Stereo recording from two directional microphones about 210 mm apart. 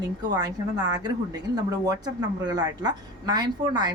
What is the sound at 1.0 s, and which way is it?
Speech, 20° right (ahead or behind).